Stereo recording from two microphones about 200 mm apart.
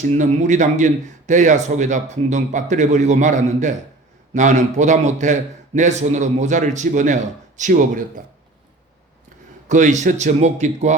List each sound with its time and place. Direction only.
0.0 s a man's voice: 35° right (ahead or behind)
9.6 s a man's voice: 35° right (ahead or behind)